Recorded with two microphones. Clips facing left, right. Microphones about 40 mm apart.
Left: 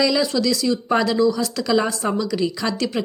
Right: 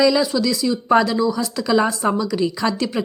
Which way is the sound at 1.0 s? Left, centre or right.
Right.